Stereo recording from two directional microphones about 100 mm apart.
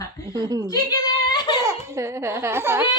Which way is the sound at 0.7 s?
40° left (ahead or behind).